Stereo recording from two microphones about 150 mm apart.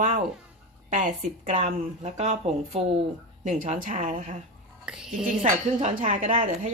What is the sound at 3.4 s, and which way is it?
Speech, 60° right (ahead or behind).